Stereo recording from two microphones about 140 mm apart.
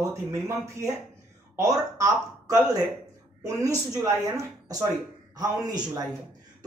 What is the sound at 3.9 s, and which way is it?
Speech, 25° right (ahead or behind).